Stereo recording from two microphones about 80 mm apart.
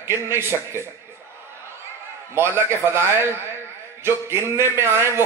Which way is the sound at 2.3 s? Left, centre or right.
Right.